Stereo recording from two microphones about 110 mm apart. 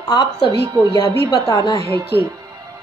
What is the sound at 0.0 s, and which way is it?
Speech, 40° left (ahead or behind).